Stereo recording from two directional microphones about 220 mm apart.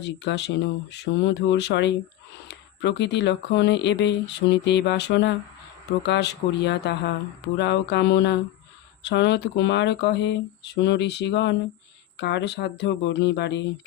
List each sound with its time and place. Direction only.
0.0 s speech: 50° left (ahead or behind)